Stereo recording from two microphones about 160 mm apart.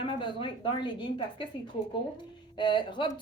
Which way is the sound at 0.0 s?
30° left (ahead or behind).